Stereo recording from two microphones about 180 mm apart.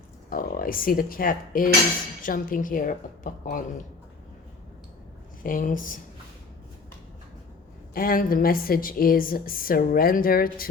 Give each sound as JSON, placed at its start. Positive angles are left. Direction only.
{"t": 0.3, "sound": "a woman's voice", "side_deg": 50}
{"t": 5.4, "sound": "a woman's voice", "side_deg": 50}
{"t": 7.9, "sound": "a woman's voice", "side_deg": 55}